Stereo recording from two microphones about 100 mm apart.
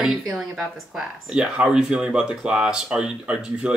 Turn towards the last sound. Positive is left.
turn(degrees=-10)  # may be behind; listen again after turning